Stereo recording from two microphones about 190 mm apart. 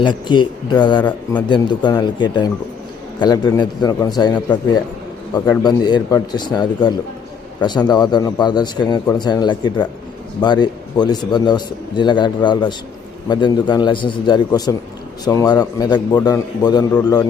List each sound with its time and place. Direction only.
0.0 s a man's voice: 25° left (ahead or behind)
1.0 s speech: 10° left (ahead or behind)
1.5 s a man's voice: 25° left (ahead or behind)